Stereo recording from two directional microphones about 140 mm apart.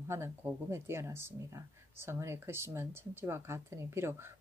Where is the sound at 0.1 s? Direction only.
20° right (ahead or behind).